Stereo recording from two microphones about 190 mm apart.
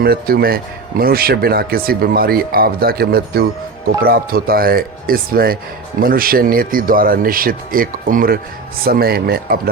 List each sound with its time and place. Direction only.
0.0 s speech: 55° right (ahead or behind)